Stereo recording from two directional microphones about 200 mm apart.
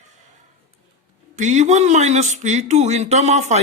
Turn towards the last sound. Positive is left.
turn(degrees=-35)  # may be behind; listen again after turning